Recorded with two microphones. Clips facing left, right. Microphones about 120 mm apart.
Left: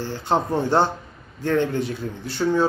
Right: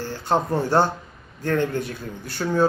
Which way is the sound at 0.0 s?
15° left (ahead or behind).